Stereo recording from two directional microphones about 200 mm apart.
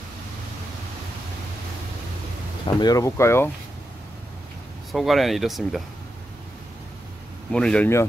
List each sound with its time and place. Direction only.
2.6 s speech: 20° left (ahead or behind)
4.9 s speech: centre (ahead or behind)
7.5 s speech: 5° left (ahead or behind)